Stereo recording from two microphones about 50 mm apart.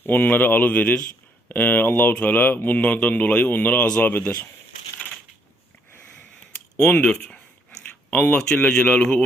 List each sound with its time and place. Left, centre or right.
0.0 s speech: left
2.8 s speech: left
6.7 s speech: centre